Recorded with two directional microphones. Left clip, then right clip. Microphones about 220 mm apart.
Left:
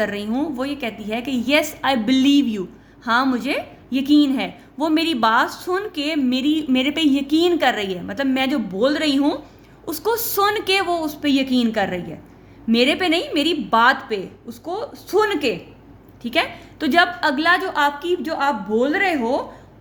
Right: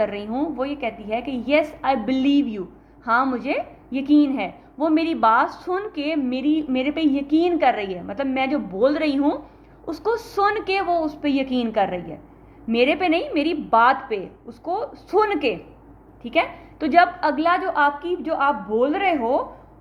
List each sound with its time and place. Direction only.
0.0 s a woman's voice: 40° left (ahead or behind)